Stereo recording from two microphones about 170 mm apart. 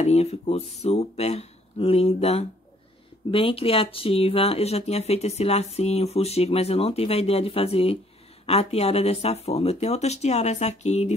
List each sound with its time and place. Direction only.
0.0 s speech: 40° left (ahead or behind)